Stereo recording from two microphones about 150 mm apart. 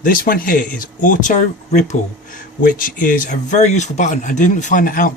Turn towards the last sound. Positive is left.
turn(degrees=70)  # may be behind; listen again after turning